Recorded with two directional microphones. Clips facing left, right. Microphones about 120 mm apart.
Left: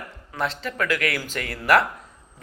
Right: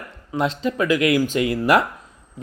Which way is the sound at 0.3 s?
20° right (ahead or behind).